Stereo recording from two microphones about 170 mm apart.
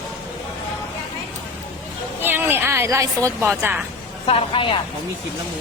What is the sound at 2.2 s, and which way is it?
A woman's voice, 10° right (ahead or behind).